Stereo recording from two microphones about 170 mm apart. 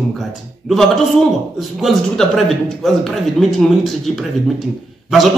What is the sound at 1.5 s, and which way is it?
A man's voice, centre (ahead or behind).